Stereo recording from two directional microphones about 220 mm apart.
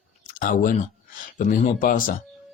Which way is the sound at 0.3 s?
40° left (ahead or behind).